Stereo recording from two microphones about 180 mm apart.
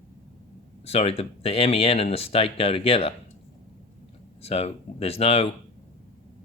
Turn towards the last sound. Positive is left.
turn(degrees=35)  # may be behind; listen again after turning